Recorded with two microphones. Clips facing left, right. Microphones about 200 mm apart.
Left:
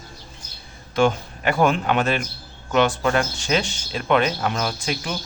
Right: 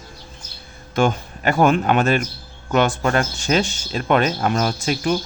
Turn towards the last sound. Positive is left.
turn(degrees=-40)  # may be behind; listen again after turning